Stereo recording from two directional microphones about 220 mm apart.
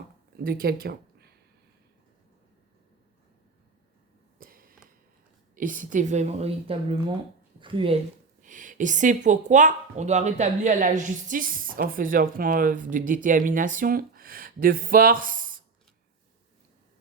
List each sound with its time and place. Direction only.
0.3 s speech: 40° right (ahead or behind)
4.4 s a sound: 40° right (ahead or behind)
5.5 s a woman's voice: 35° right (ahead or behind)
8.4 s speech: 35° right (ahead or behind)